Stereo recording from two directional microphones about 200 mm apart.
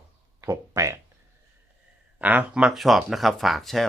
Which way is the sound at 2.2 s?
10° right (ahead or behind).